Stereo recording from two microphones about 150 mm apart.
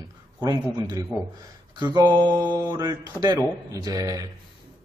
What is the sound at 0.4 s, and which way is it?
A man's voice, 25° right (ahead or behind).